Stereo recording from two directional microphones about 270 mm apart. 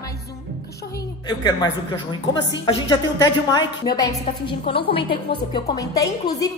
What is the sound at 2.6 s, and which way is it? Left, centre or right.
A woman's voice, centre.